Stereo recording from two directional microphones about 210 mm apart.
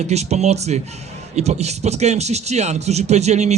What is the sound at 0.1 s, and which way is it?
A man's voice, 30° right (ahead or behind).